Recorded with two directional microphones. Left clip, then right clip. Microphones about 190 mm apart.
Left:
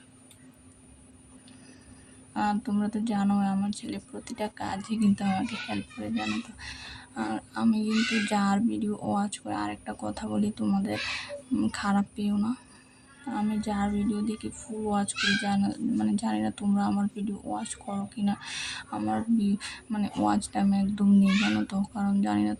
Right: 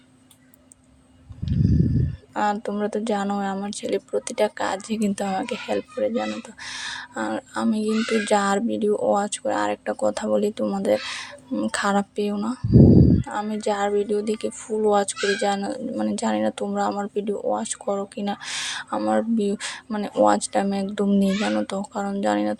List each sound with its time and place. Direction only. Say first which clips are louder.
2.3 s speech: right 6 dB; 35° right (ahead or behind)